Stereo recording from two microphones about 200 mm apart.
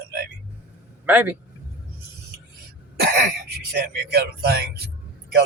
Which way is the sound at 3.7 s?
50° right (ahead or behind).